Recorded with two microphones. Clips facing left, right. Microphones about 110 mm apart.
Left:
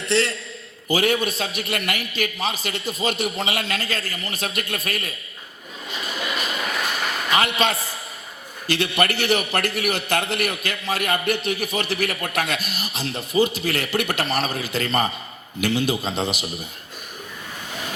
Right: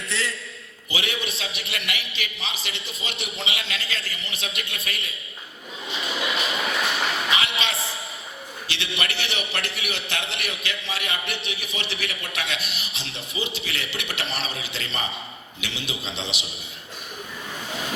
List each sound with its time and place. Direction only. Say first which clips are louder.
0.1 s a man's voice: left 9 dB; 70° left (ahead or behind)
0.9 s a man's voice: left 9 dB; 45° left (ahead or behind)
5.9 s a sound: even; 45° left (ahead or behind)
8.6 s a man's voice: left 9 dB; 45° left (ahead or behind)